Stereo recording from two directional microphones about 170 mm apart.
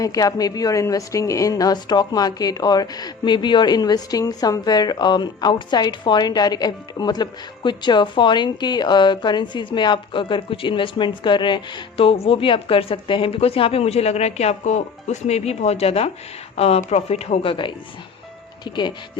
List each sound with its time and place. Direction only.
0.0 s a woman's voice: 20° left (ahead or behind)